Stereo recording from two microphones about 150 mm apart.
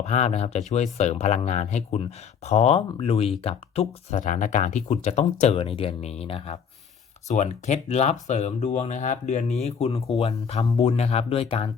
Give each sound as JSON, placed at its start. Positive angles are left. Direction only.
{"t": 0.0, "sound": "speech", "side_deg": 45}
{"t": 4.2, "sound": "speech", "side_deg": 60}